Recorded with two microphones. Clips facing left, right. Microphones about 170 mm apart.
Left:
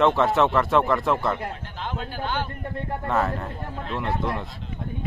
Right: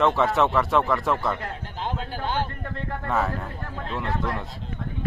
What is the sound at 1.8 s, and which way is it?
Speech, 35° right (ahead or behind).